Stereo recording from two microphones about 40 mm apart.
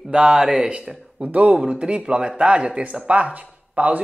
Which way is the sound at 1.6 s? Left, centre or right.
Right.